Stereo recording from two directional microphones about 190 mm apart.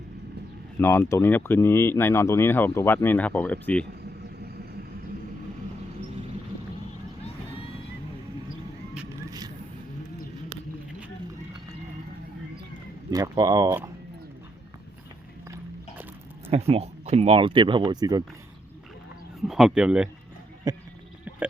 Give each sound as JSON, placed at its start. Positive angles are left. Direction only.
{"t": 0.8, "sound": "speech", "side_deg": 15}
{"t": 13.1, "sound": "speech", "side_deg": -20}
{"t": 16.5, "sound": "speech", "side_deg": -30}
{"t": 19.4, "sound": "speech", "side_deg": 0}
{"t": 20.7, "sound": "speech", "side_deg": -20}
{"t": 21.3, "sound": "a sound", "side_deg": -10}